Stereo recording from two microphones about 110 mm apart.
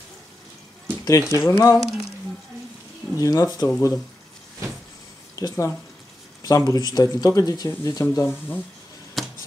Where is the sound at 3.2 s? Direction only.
35° left (ahead or behind).